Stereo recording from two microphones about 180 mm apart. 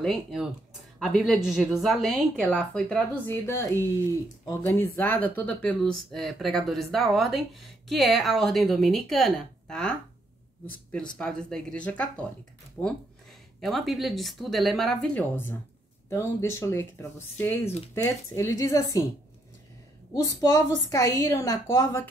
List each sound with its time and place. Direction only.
0.0 s a woman's voice: centre (ahead or behind)
17.9 s a woman's voice: 15° left (ahead or behind)
20.2 s a woman's voice: 20° left (ahead or behind)